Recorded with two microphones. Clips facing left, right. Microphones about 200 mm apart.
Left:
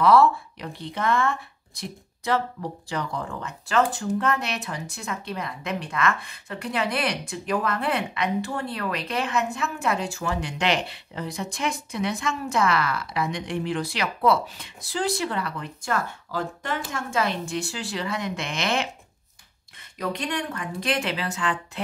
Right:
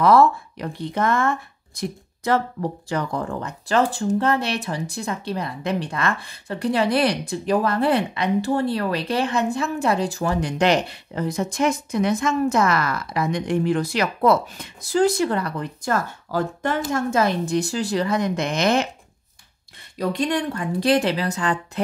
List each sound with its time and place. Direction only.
0.0 s a woman's voice: 45° right (ahead or behind)
20.0 s a woman's voice: 35° right (ahead or behind)